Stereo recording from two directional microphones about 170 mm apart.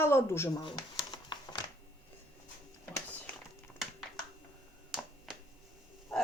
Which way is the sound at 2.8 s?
15° left (ahead or behind).